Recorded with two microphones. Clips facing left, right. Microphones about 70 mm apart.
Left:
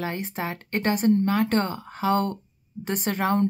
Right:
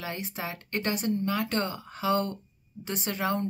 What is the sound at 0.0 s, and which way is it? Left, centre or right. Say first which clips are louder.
A woman's voice: left 5 dB; left.